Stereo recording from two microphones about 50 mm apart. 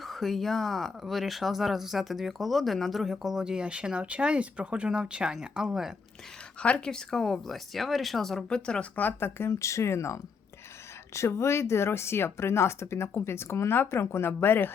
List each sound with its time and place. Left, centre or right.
0.0 s speech: centre
3.6 s speech: right
6.6 s speech: centre
8.4 s speech: centre
9.0 s speech: left
9.5 s speech: left